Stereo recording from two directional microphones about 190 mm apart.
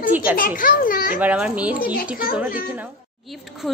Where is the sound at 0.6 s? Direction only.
45° left (ahead or behind).